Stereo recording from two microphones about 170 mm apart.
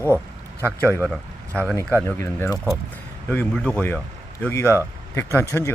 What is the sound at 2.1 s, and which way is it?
Speech, 15° left (ahead or behind).